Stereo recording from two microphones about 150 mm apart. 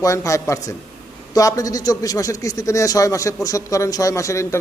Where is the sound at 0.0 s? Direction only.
20° left (ahead or behind).